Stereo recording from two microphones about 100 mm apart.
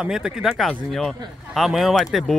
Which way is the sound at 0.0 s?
5° right (ahead or behind).